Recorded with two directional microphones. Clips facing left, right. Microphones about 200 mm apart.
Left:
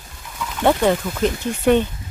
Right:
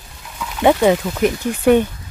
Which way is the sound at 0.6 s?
10° right (ahead or behind).